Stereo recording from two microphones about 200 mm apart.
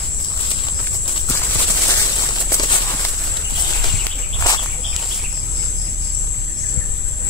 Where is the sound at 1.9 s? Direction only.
15° left (ahead or behind).